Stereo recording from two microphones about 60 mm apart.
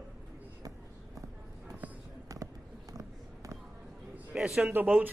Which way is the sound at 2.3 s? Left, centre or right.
Right.